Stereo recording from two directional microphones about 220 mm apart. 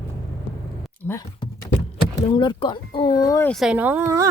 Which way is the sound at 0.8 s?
10° left (ahead or behind).